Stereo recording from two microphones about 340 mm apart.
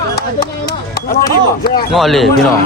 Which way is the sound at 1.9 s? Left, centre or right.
Centre.